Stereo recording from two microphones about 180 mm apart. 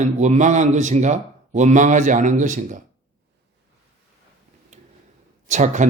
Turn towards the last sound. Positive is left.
turn(degrees=-45)  # may be behind; listen again after turning